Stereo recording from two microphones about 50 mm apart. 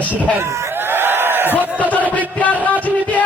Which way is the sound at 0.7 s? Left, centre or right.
Right.